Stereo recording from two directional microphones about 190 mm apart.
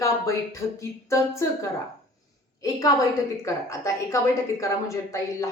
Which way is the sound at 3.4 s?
15° left (ahead or behind).